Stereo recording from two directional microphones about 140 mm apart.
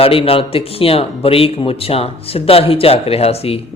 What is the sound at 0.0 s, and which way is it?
Speech, 40° left (ahead or behind).